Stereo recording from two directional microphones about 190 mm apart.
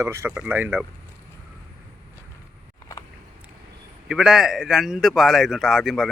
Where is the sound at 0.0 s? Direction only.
15° right (ahead or behind).